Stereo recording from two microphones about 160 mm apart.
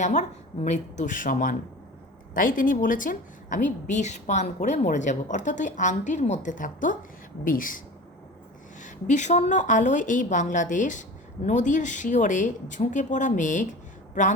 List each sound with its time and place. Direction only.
0.0 s a woman's voice: 45° left (ahead or behind)
8.8 s a woman's voice: 50° left (ahead or behind)